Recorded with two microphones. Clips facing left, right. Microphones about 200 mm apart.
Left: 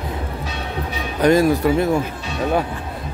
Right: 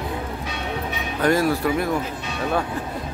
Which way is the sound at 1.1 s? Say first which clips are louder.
Left 5 dB; 20° left (ahead or behind).